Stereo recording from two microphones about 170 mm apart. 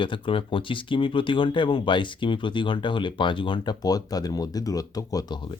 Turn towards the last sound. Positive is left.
turn(degrees=25)  # may be behind; listen again after turning